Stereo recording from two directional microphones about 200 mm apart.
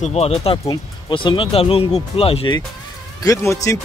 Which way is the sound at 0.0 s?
30° left (ahead or behind).